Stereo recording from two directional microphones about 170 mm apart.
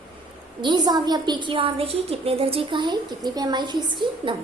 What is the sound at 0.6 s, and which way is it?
A woman's voice, 25° right (ahead or behind).